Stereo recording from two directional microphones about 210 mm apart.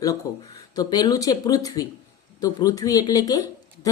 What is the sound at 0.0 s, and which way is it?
Speech, 15° left (ahead or behind).